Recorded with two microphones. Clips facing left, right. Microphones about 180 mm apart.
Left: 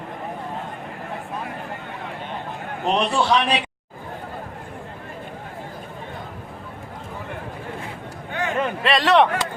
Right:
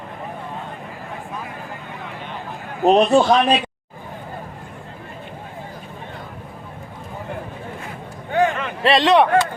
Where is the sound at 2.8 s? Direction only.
50° right (ahead or behind).